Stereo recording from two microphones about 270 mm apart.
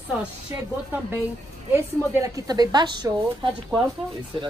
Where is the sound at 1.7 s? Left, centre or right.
Centre.